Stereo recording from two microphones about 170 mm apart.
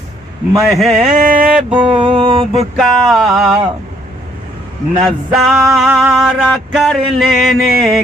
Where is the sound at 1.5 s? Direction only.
5° right (ahead or behind).